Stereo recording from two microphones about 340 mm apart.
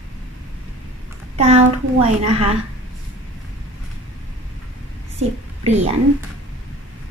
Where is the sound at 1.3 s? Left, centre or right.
Centre.